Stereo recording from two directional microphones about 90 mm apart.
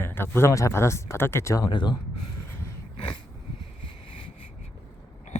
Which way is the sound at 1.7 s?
55° left (ahead or behind).